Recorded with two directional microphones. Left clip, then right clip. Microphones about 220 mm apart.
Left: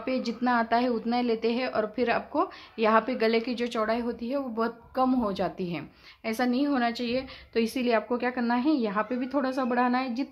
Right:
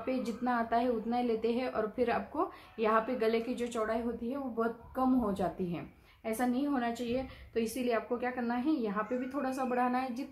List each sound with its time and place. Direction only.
0.0 s a woman's voice: 35° left (ahead or behind)